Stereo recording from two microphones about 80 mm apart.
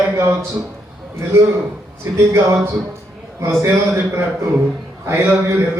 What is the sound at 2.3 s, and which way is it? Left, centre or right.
A man's voice, right.